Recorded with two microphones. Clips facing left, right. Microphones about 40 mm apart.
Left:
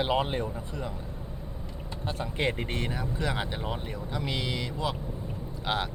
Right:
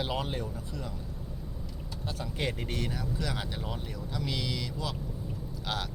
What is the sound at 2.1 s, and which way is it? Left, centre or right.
Speech, left.